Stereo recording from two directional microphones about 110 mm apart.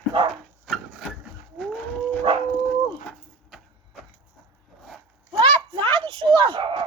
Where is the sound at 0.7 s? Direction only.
5° right (ahead or behind).